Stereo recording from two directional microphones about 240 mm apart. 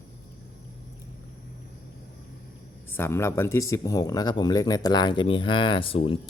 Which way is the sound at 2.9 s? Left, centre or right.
Centre.